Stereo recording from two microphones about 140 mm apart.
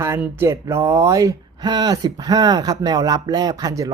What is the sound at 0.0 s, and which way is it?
Speech, 20° right (ahead or behind).